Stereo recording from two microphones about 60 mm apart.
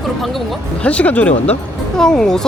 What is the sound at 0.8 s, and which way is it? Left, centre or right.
Speech, left.